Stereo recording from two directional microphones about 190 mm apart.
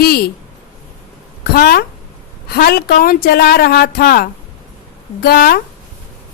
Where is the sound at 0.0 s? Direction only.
55° left (ahead or behind).